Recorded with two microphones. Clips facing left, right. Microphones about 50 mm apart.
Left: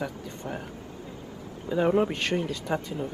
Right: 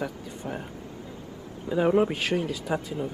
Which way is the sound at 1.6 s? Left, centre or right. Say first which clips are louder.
Right 1 dB; centre.